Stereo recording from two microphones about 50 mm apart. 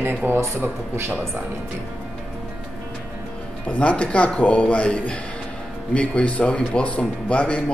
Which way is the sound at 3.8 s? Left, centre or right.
Left.